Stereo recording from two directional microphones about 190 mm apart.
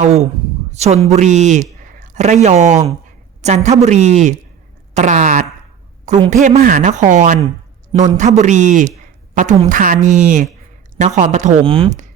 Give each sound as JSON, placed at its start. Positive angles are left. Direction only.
{"t": 0.0, "sound": "a woman's voice", "side_deg": -35}